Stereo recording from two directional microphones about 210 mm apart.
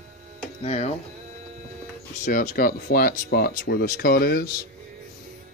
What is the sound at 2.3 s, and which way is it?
Speech, 40° left (ahead or behind).